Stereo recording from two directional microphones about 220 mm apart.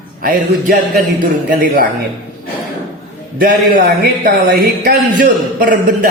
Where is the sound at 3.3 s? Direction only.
40° right (ahead or behind).